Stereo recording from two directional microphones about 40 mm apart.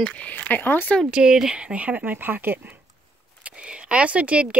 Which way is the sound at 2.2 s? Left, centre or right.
Right.